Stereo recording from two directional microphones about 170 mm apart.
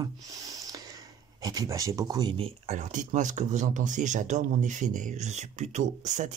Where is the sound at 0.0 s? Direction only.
20° right (ahead or behind).